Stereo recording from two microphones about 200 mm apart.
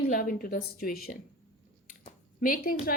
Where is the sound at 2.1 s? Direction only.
45° left (ahead or behind).